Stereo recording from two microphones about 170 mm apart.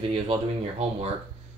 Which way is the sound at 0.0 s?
30° right (ahead or behind).